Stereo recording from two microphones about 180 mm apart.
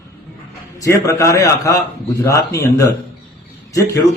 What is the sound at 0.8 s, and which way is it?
A man's voice, 15° left (ahead or behind).